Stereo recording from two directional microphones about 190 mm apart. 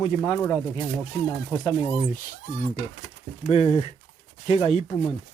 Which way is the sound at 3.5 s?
30° left (ahead or behind).